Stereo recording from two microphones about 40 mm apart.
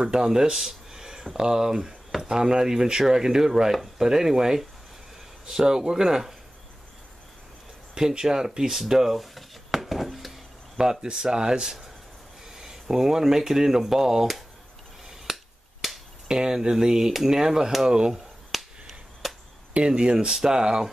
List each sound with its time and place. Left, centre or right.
0.0 s speech: centre
7.9 s speech: centre
8.5 s a sound: centre
10.8 s speech: centre
15.3 s finger snapping: centre
15.8 s a sound: centre
16.3 s speech: centre
18.1 s finger snapping: centre
19.7 s speech: right